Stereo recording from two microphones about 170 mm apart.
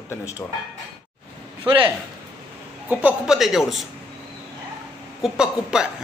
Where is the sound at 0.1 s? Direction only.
20° left (ahead or behind).